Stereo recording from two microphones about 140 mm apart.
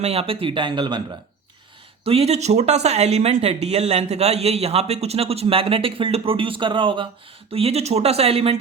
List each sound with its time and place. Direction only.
0.0 s speech: 45° right (ahead or behind)
2.0 s speech: 45° right (ahead or behind)
7.5 s speech: 45° right (ahead or behind)